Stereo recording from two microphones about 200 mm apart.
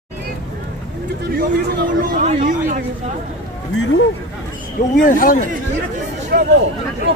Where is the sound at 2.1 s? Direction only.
40° right (ahead or behind).